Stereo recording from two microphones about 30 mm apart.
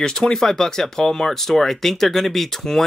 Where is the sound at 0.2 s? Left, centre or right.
Centre.